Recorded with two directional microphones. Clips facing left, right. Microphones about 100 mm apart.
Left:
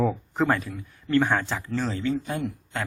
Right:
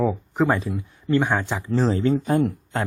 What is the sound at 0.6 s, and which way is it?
Speech, 25° right (ahead or behind).